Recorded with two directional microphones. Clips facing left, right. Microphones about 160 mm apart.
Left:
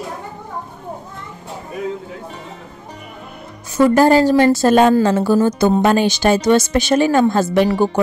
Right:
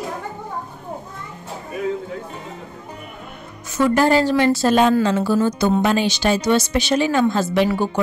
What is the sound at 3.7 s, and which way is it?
A woman's voice, 40° left (ahead or behind).